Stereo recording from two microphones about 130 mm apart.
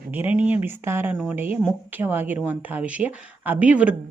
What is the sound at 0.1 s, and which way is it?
A woman's voice, 15° right (ahead or behind).